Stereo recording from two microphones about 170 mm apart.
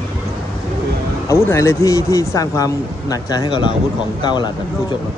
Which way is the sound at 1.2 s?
15° left (ahead or behind).